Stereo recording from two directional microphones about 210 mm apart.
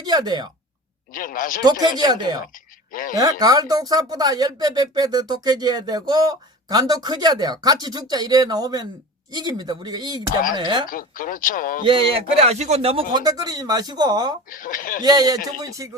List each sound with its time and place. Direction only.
0.0 s speech: 20° right (ahead or behind)
1.1 s speech: 40° left (ahead or behind)
1.6 s speech: 20° right (ahead or behind)
2.9 s speech: 40° left (ahead or behind)
3.2 s speech: 15° right (ahead or behind)
10.8 s speech: 40° left (ahead or behind)
11.9 s speech: 25° right (ahead or behind)
14.5 s speech: 40° left (ahead or behind)
15.0 s speech: 20° right (ahead or behind)